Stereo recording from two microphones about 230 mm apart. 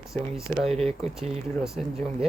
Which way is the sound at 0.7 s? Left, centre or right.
Right.